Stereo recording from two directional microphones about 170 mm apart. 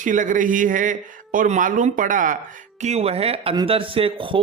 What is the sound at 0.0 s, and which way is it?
Speech, 50° right (ahead or behind).